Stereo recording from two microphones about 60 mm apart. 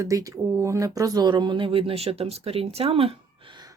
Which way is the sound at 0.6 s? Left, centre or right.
Right.